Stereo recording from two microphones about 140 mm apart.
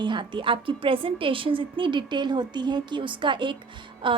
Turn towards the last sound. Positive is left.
turn(degrees=-35)  # may be behind; listen again after turning